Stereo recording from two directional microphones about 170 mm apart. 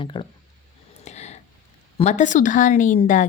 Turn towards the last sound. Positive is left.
turn(degrees=45)  # may be behind; listen again after turning